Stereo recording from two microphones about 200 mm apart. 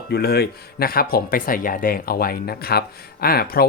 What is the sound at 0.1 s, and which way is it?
Speech, 50° left (ahead or behind).